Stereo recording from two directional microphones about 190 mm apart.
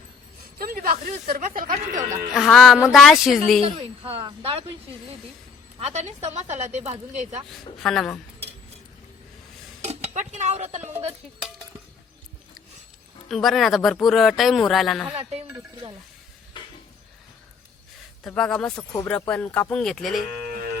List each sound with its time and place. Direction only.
0.6 s speech: 50° right (ahead or behind)
2.3 s speech: centre (ahead or behind)
3.6 s speech: 30° right (ahead or behind)
5.8 s a woman's voice: 35° right (ahead or behind)
7.8 s speech: centre (ahead or behind)
9.8 s speech: 35° right (ahead or behind)
13.2 s speech: centre (ahead or behind)
15.1 s a woman's voice: 35° right (ahead or behind)
15.4 s speech: 15° right (ahead or behind)
18.2 s speech: 5° left (ahead or behind)